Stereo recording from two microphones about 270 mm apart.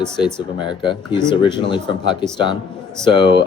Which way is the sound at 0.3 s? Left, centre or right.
Centre.